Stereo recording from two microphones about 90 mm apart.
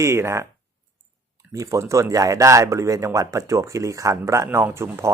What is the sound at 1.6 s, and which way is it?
Speech, 35° right (ahead or behind).